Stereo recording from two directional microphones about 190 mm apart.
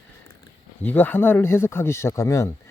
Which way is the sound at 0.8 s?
10° left (ahead or behind).